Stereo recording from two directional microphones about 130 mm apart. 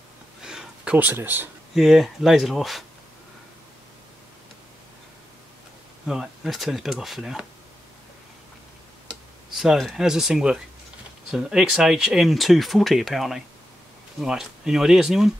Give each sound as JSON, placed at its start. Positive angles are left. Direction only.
{"t": 0.5, "sound": "a sound", "side_deg": -5}
{"t": 1.8, "sound": "speech", "side_deg": 0}
{"t": 6.0, "sound": "speech", "side_deg": -5}
{"t": 9.6, "sound": "speech", "side_deg": 0}